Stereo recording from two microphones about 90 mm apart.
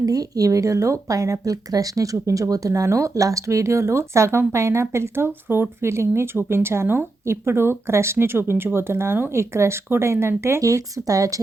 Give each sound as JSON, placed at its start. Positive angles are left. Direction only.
{"t": 0.0, "sound": "speech", "side_deg": -40}